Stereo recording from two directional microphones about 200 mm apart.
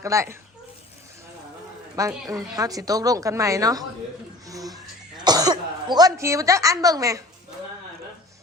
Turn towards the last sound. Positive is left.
turn(degrees=-15)  # may be behind; listen again after turning